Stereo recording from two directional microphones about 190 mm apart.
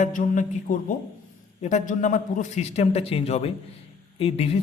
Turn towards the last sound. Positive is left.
turn(degrees=30)  # may be behind; listen again after turning